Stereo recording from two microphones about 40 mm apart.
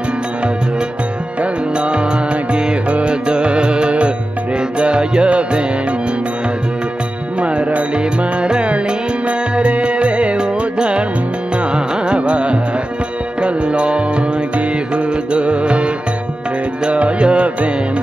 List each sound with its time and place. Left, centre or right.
1.4 s music: right
7.3 s music: right
11.7 s carnatic music: right
13.4 s music: right
15.3 s music: right